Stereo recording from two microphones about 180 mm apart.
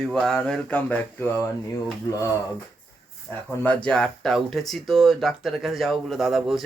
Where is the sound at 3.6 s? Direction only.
5° left (ahead or behind).